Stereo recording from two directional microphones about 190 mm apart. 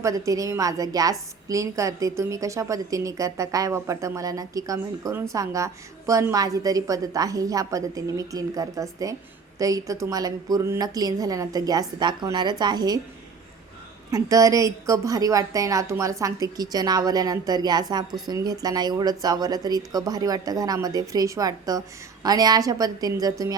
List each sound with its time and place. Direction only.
0.0 s a woman's voice: 15° right (ahead or behind)
14.1 s a woman's voice: 15° right (ahead or behind)